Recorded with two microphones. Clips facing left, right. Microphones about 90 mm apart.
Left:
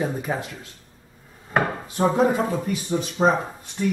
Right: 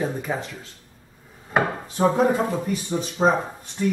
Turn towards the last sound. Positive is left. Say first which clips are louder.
# right 1 dB
turn(degrees=0)  # may be behind; listen again after turning